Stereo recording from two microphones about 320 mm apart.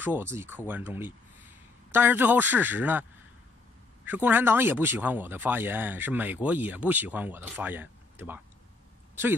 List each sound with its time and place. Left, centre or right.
0.0 s speech: centre